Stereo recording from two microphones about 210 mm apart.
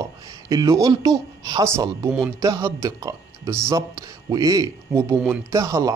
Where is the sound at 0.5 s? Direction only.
15° right (ahead or behind).